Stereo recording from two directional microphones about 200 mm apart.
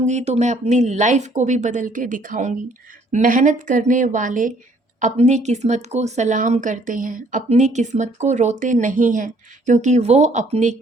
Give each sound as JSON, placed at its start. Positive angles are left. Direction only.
{"t": 0.0, "sound": "speech", "side_deg": -35}